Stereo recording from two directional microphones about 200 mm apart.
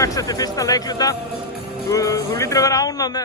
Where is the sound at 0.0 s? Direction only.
15° left (ahead or behind).